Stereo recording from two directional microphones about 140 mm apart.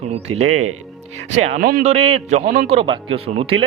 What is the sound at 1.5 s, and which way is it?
Speech, 90° right.